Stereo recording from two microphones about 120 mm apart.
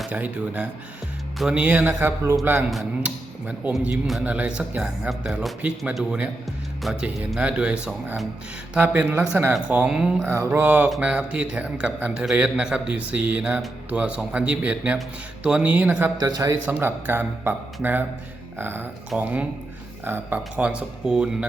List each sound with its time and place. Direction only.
0.1 s a man's voice: 10° right (ahead or behind)
10.2 s a man's voice: 25° right (ahead or behind)
10.6 s a man's voice: 10° right (ahead or behind)
16.1 s a man's voice: 30° right (ahead or behind)
16.8 s a man's voice: 15° right (ahead or behind)